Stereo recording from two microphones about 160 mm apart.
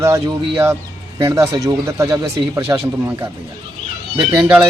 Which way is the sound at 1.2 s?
20° right (ahead or behind).